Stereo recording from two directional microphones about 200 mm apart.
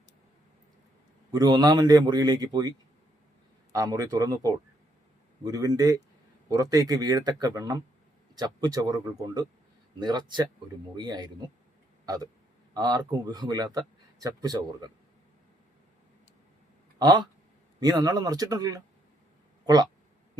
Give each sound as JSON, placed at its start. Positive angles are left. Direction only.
{"t": 1.3, "sound": "a man's voice", "side_deg": -20}
{"t": 17.0, "sound": "a man's voice", "side_deg": -20}